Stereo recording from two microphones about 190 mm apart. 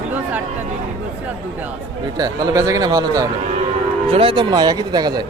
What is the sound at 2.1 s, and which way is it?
Speech, 20° right (ahead or behind).